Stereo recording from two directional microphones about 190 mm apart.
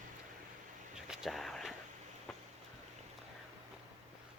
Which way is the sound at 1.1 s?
Centre (ahead or behind).